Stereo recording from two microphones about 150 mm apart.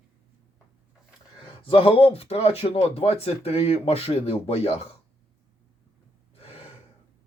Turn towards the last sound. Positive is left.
turn(degrees=40)  # may be behind; listen again after turning